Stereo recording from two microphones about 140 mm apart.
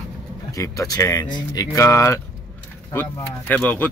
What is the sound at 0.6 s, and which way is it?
A man's voice, 25° left (ahead or behind).